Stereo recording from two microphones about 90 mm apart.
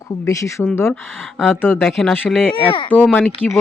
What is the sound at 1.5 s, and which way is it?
Speech, 25° left (ahead or behind).